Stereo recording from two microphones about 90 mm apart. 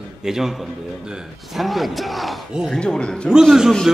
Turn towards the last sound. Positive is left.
turn(degrees=-5)  # may be behind; listen again after turning